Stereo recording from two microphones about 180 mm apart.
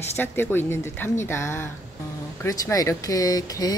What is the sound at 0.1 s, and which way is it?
A woman's voice, 10° left (ahead or behind).